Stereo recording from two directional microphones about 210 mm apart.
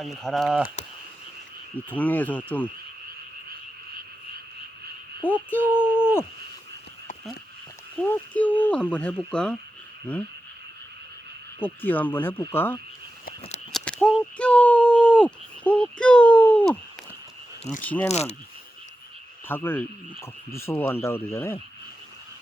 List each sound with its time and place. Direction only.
0.0 s speech: centre (ahead or behind)
1.7 s speech: 10° left (ahead or behind)
5.5 s speech: 10° left (ahead or behind)
8.1 s speech: 5° left (ahead or behind)
11.6 s speech: 10° left (ahead or behind)
13.7 s a sound: 5° left (ahead or behind)
17.8 s speech: 5° left (ahead or behind)
18.1 s speech: 30° left (ahead or behind)
19.5 s speech: 10° left (ahead or behind)